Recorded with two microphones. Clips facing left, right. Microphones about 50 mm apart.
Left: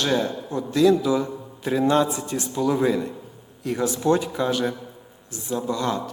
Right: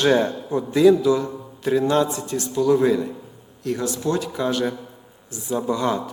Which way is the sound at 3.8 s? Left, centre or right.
Left.